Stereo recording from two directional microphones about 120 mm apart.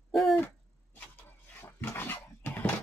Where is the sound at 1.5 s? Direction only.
20° left (ahead or behind).